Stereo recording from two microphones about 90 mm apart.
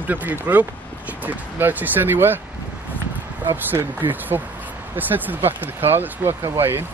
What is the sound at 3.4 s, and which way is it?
Speech, 25° right (ahead or behind).